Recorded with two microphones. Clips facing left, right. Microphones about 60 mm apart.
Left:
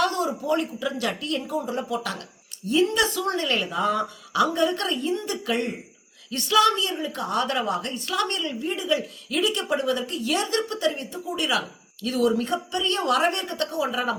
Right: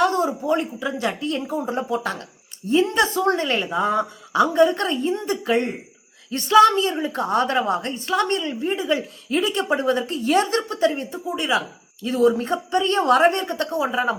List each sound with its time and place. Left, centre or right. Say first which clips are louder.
0.0 s a woman's voice: right 4 dB; right